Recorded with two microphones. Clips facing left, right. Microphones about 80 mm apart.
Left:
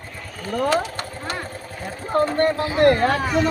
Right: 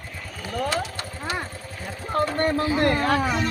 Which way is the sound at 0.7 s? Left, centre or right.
Left.